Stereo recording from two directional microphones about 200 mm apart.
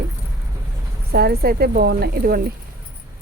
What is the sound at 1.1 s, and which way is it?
Speech, 50° right (ahead or behind).